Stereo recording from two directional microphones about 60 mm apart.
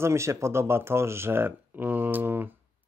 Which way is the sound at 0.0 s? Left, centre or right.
Right.